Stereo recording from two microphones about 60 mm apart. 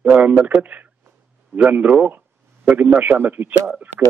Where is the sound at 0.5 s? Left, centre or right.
Right.